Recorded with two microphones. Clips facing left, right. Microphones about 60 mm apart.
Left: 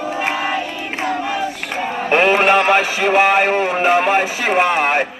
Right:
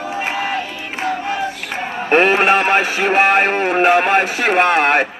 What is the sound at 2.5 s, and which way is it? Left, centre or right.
A man's voice, right.